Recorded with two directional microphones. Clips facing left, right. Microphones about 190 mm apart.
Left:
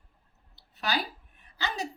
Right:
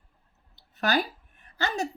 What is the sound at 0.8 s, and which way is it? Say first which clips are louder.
A woman's voice: right 5 dB; 50° right (ahead or behind).